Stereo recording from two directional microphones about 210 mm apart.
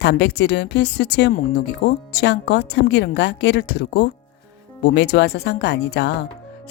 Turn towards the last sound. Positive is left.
turn(degrees=55)  # may be behind; listen again after turning